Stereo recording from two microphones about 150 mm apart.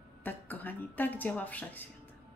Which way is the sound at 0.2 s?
10° left (ahead or behind).